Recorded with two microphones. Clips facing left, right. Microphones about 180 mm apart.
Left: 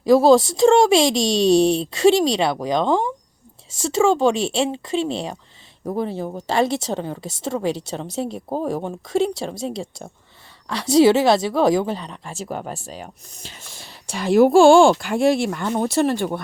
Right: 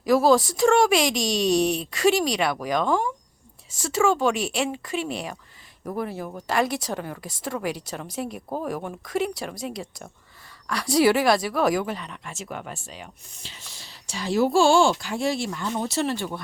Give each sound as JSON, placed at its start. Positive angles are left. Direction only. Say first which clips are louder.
{"t": 0.0, "sound": "speech", "louder": "left 5 dB", "side_deg": 25}